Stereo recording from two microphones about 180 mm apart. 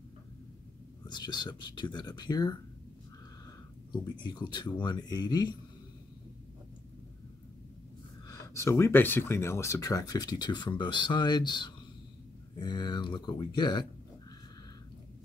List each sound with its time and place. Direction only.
1.0 s speech: 25° left (ahead or behind)
3.9 s speech: 25° left (ahead or behind)
8.3 s speech: 15° left (ahead or behind)